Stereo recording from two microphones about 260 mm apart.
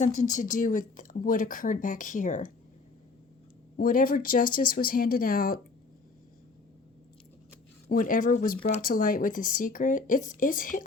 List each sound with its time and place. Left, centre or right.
0.0 s speech: left
3.8 s speech: left
7.9 s speech: left